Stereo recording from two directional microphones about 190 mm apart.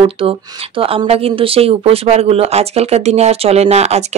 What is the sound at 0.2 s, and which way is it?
A woman's voice, 30° right (ahead or behind).